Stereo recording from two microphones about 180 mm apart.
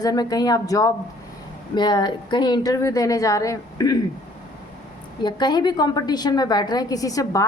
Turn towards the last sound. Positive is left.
turn(degrees=20)  # may be behind; listen again after turning